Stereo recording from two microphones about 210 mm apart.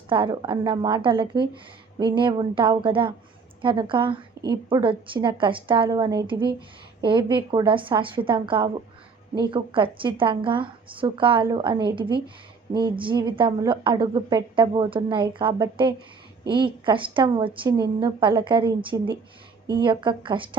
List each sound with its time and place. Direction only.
0.1 s a woman's voice: 25° right (ahead or behind)